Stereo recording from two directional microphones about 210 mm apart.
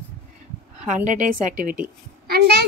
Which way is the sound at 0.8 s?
35° right (ahead or behind).